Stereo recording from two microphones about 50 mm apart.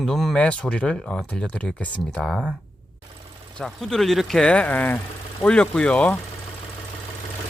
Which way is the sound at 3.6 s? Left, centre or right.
Centre.